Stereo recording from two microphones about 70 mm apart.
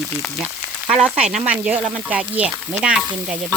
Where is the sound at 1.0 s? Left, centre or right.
Centre.